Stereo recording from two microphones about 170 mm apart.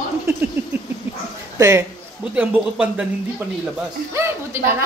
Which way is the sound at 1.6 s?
15° right (ahead or behind).